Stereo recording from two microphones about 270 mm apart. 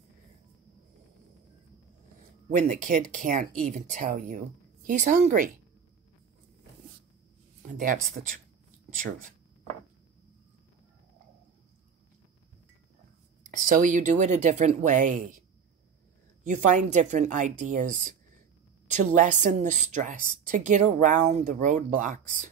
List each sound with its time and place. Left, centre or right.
2.5 s a woman's voice: right
7.7 s a woman's voice: right
13.4 s a woman's voice: right
16.4 s a woman's voice: right